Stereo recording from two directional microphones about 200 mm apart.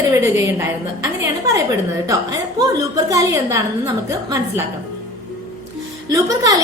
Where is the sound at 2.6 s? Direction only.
15° right (ahead or behind).